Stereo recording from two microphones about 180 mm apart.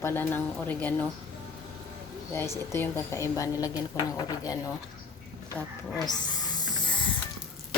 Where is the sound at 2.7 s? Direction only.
15° left (ahead or behind).